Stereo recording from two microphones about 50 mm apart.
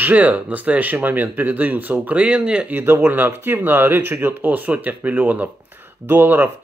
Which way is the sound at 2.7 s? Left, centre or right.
Right.